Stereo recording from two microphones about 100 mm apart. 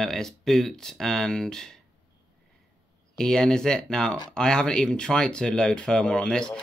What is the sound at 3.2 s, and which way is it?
Speech, 5° left (ahead or behind).